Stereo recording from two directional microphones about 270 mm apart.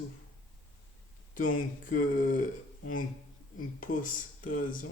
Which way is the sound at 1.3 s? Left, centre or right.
Left.